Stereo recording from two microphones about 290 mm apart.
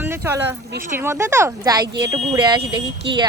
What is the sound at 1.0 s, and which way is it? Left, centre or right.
Speech, centre.